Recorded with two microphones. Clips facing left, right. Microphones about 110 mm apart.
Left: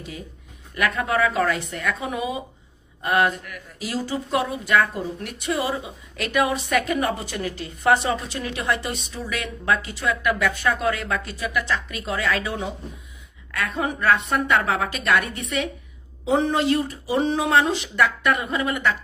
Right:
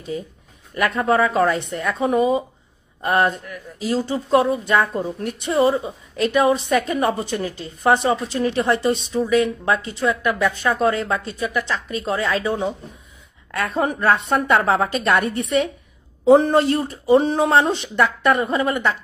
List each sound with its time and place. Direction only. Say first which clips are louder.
0.7 s speech: right 4 dB; 30° right (ahead or behind)
13.9 s speech: even; 30° right (ahead or behind)
16.3 s speech: right 7 dB; 45° right (ahead or behind); by 18.9 s 30° right (ahead or behind)